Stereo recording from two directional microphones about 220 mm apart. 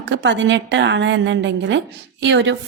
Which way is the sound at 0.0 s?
55° right (ahead or behind).